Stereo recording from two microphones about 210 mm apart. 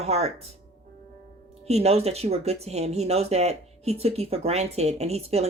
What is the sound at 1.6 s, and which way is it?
Speech, 30° right (ahead or behind).